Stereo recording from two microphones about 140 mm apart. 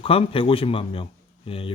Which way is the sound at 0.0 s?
40° left (ahead or behind).